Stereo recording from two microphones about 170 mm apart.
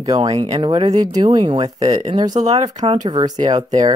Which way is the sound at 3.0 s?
25° right (ahead or behind).